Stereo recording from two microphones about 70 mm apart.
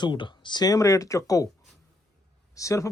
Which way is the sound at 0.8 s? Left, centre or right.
Left.